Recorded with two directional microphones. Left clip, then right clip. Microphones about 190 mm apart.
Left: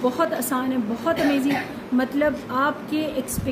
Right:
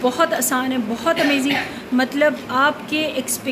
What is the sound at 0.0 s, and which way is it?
A woman's voice, 5° left (ahead or behind).